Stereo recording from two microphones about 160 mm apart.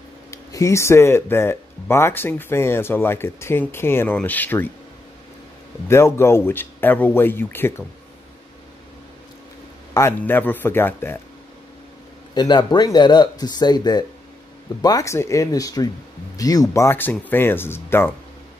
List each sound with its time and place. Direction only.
0.3 s speech: 20° left (ahead or behind)
5.9 s speech: 15° left (ahead or behind)
9.9 s speech: 15° left (ahead or behind)
12.4 s speech: 25° left (ahead or behind)